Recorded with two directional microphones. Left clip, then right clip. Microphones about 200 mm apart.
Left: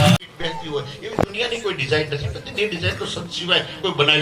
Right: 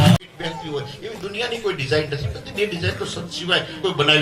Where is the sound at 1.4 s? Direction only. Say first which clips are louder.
Left 1 dB; 55° right (ahead or behind).